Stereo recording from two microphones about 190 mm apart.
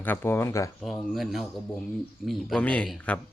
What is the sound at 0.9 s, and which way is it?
A man's voice, centre (ahead or behind).